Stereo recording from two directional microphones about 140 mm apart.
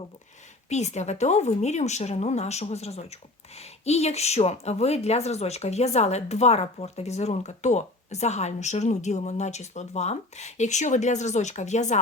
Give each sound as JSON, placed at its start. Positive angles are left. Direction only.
{"t": 0.7, "sound": "a woman's voice", "side_deg": 55}